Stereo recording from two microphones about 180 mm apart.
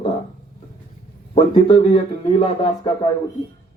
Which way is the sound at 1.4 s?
25° left (ahead or behind).